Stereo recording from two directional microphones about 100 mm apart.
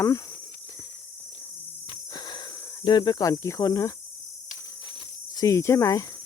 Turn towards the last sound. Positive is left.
turn(degrees=30)  # may be behind; listen again after turning